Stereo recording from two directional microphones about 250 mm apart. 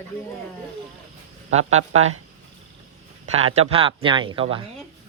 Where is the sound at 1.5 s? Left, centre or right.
Right.